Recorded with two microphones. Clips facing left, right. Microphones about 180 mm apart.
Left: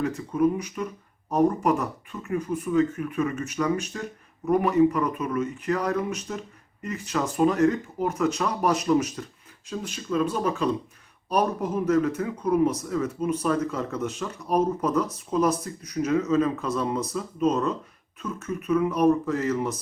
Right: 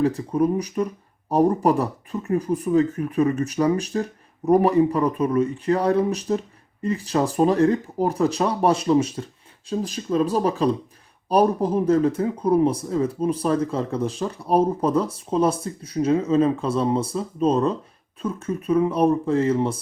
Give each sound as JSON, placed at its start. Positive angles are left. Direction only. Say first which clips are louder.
{"t": 0.0, "sound": "speech", "louder": "right 3 dB", "side_deg": -35}